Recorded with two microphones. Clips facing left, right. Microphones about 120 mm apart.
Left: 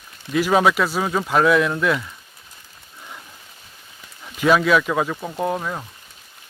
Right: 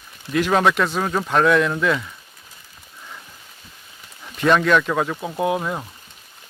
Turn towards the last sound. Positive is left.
turn(degrees=-5)  # may be behind; listen again after turning